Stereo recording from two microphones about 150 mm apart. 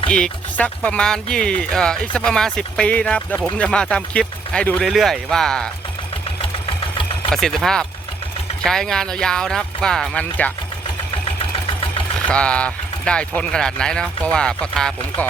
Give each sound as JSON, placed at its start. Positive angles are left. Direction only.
{"t": 0.1, "sound": "speech", "side_deg": 5}
{"t": 6.4, "sound": "engine", "side_deg": 35}
{"t": 7.3, "sound": "speech", "side_deg": 0}
{"t": 11.3, "sound": "engine", "side_deg": 40}
{"t": 12.3, "sound": "speech", "side_deg": 5}